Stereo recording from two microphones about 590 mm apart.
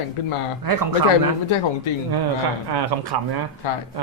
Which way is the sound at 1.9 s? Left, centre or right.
Left.